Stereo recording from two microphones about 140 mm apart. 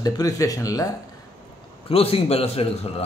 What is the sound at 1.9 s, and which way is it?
A man's voice, 45° left (ahead or behind).